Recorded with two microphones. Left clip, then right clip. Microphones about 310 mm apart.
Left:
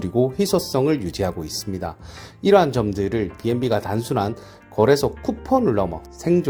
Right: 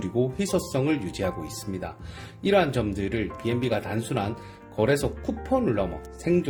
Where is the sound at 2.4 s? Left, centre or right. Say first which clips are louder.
Left 6 dB; left.